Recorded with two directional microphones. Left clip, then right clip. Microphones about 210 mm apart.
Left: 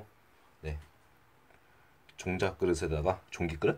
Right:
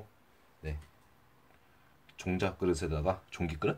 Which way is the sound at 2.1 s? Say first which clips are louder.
Left 2 dB; 15° left (ahead or behind).